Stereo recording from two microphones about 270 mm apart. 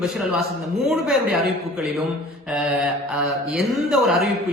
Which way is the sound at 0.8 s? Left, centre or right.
Centre.